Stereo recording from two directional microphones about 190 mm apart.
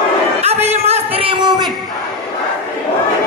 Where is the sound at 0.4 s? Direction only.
35° right (ahead or behind).